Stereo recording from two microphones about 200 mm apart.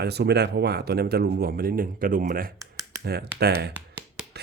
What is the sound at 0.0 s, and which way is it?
Speech, 55° right (ahead or behind).